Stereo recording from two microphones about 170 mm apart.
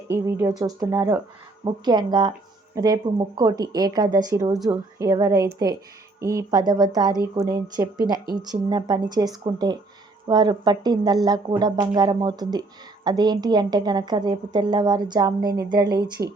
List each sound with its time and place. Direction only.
0.1 s speech: 15° right (ahead or behind)